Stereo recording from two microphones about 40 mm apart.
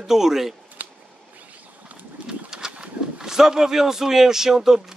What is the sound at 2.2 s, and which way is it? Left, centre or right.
Speech, centre.